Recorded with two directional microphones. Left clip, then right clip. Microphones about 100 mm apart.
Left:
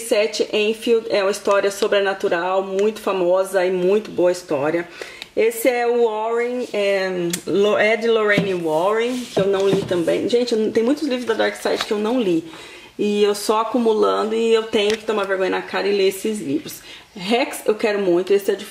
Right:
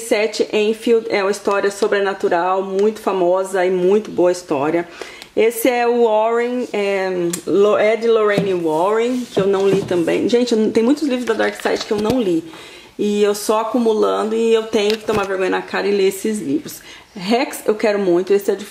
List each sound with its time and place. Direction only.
0.1 s speech: 15° right (ahead or behind)
5.6 s speech: 35° right (ahead or behind)
6.6 s speech: centre (ahead or behind)
10.2 s speech: 30° right (ahead or behind)
11.3 s speech: centre (ahead or behind)
17.2 s speech: 5° right (ahead or behind)